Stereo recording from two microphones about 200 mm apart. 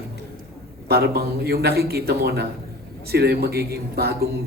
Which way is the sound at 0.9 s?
50° right (ahead or behind).